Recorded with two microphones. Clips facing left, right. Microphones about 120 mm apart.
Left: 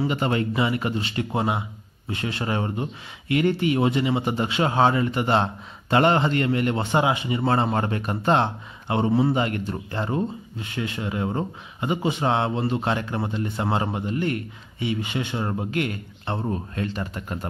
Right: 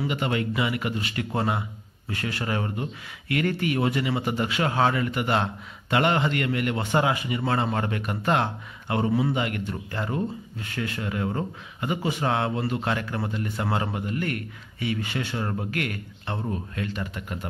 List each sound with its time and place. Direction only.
0.0 s speech: 35° left (ahead or behind)